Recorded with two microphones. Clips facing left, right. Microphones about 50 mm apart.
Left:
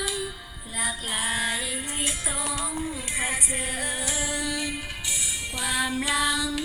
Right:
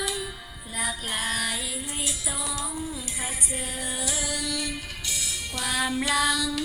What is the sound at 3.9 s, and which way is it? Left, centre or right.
Music, left.